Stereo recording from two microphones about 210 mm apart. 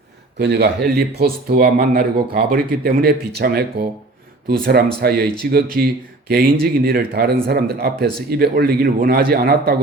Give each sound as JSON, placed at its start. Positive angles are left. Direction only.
{"t": 0.3, "sound": "speech", "side_deg": -50}